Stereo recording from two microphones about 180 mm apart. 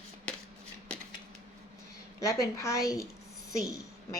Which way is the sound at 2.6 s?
15° left (ahead or behind).